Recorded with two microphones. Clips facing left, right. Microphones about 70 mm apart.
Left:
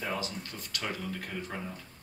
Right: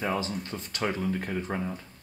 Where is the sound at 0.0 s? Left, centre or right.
Right.